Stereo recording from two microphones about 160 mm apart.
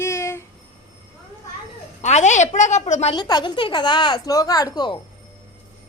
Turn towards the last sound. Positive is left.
turn(degrees=25)  # may be behind; listen again after turning